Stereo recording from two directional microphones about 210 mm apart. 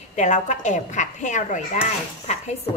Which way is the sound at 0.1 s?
35° left (ahead or behind).